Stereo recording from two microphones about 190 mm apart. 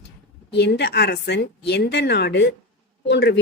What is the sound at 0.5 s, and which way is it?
Speech, 60° left (ahead or behind).